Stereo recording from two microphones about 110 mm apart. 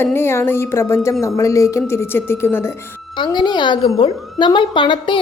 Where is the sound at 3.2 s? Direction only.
45° left (ahead or behind).